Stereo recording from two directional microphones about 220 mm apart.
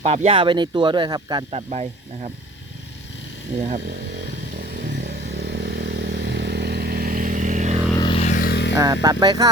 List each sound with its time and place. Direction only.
0.0 s speech: 30° right (ahead or behind)
4.8 s vehicle: 50° right (ahead or behind); by 7.8 s 35° right (ahead or behind)
7.9 s a sound: 25° left (ahead or behind); by 8.8 s 50° left (ahead or behind)
8.8 s speech: 15° right (ahead or behind)